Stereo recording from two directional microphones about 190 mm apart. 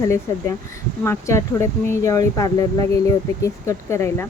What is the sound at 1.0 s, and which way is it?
A woman's voice, 15° left (ahead or behind).